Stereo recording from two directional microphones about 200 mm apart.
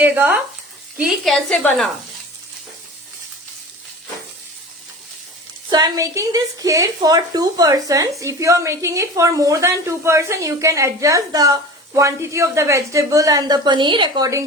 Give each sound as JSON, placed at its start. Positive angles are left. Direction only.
{"t": 0.0, "sound": "a woman's voice", "side_deg": -10}
{"t": 5.7, "sound": "a woman's voice", "side_deg": -15}